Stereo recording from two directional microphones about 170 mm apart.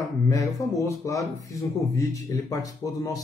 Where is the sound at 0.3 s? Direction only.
20° left (ahead or behind).